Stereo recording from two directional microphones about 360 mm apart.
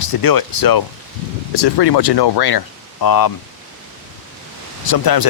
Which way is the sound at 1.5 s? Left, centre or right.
Left.